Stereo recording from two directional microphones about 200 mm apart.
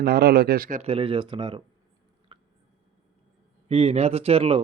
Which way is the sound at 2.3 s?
25° right (ahead or behind).